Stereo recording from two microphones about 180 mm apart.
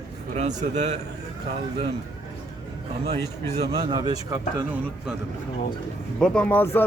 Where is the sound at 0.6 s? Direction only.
40° right (ahead or behind).